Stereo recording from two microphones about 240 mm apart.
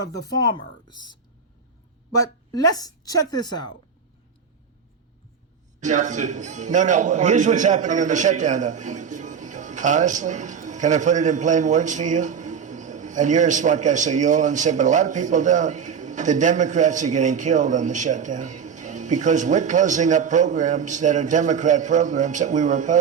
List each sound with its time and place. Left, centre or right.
0.3 s speech: centre
2.1 s speech: centre
5.8 s a man's voice: right